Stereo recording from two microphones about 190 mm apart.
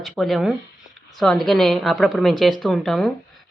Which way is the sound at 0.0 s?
Centre (ahead or behind).